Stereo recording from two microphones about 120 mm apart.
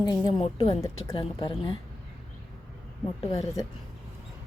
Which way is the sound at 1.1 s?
45° left (ahead or behind).